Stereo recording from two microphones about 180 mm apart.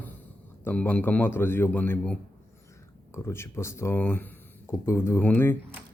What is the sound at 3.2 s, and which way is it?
A man's voice, 15° left (ahead or behind).